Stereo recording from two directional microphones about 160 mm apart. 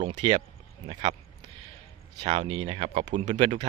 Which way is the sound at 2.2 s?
40° right (ahead or behind).